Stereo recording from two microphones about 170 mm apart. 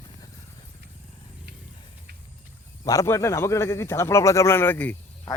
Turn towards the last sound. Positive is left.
turn(degrees=10)  # may be behind; listen again after turning